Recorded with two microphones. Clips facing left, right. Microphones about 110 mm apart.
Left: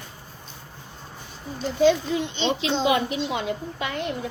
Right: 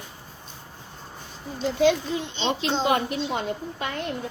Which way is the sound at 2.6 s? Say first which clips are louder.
Left 1 dB; 50° right (ahead or behind).